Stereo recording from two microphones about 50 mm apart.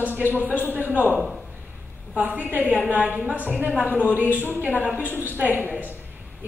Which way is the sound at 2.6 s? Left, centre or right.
Left.